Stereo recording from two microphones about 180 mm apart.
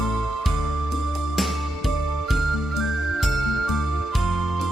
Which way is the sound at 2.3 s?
Centre (ahead or behind).